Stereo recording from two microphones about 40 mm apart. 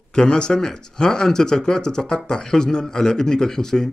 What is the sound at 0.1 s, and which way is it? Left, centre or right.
Speech, left.